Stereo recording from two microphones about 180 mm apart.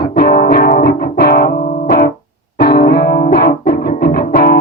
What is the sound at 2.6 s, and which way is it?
Music, 60° left (ahead or behind).